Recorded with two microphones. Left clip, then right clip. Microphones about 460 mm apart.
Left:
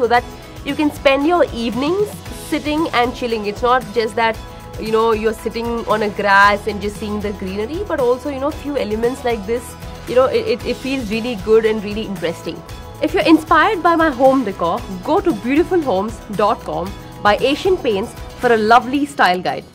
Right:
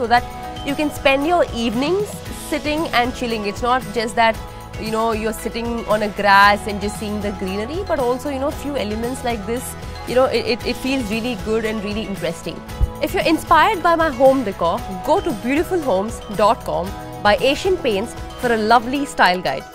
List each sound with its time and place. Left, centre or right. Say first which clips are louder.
0.1 s speech: left 1 dB; right
2.5 s speech: left 1 dB; right
10.1 s speech: left 2 dB; right
13.0 s speech: left 5 dB; right